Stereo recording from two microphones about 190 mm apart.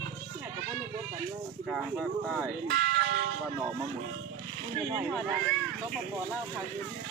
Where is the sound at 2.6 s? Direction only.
55° right (ahead or behind).